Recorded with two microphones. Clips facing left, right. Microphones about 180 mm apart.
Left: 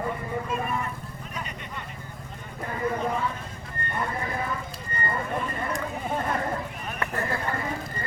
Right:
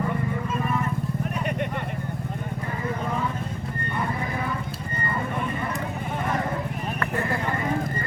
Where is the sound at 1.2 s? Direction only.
60° right (ahead or behind).